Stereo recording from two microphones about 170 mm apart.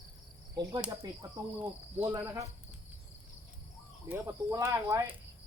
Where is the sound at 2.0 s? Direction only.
10° right (ahead or behind).